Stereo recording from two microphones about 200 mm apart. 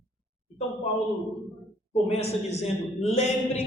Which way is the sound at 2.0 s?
30° left (ahead or behind).